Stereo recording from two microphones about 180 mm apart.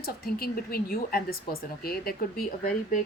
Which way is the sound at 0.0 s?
55° left (ahead or behind).